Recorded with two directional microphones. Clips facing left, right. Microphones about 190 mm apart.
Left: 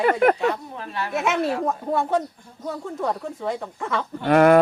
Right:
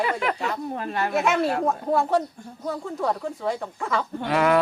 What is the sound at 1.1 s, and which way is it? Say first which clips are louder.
Speech: even; centre (ahead or behind).